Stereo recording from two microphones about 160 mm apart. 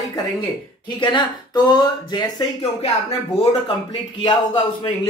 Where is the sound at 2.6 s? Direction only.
40° left (ahead or behind).